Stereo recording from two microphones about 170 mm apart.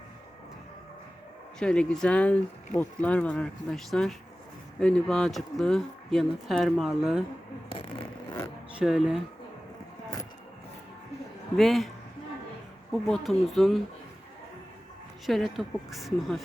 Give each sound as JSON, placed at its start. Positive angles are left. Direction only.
{"t": 1.5, "sound": "speech", "side_deg": 5}
{"t": 7.7, "sound": "a sound", "side_deg": 30}
{"t": 8.7, "sound": "speech", "side_deg": 0}
{"t": 11.5, "sound": "speech", "side_deg": 0}
{"t": 12.9, "sound": "speech", "side_deg": 0}
{"t": 15.3, "sound": "speech", "side_deg": 0}